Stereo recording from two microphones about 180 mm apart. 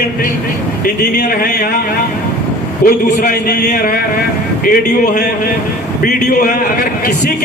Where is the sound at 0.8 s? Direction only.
55° left (ahead or behind).